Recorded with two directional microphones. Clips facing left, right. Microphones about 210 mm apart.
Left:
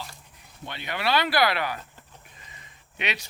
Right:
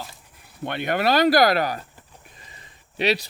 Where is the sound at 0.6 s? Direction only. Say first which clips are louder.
Right 7 dB; 55° right (ahead or behind).